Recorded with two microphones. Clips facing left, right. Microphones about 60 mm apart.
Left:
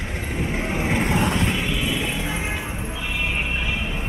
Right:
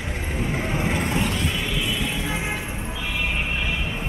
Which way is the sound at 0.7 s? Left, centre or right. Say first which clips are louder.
Left 3 dB; centre.